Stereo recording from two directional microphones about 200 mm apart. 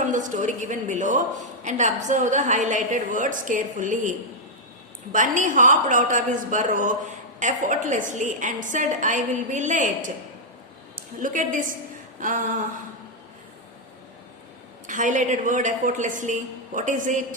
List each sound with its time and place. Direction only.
0.0 s a woman's voice: 40° right (ahead or behind)
5.1 s a woman's voice: 40° right (ahead or behind)
12.2 s a sound: 40° right (ahead or behind)
14.8 s a woman's voice: 40° right (ahead or behind)